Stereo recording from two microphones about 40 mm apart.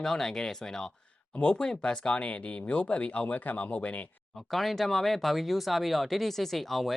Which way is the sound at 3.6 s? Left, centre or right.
Left.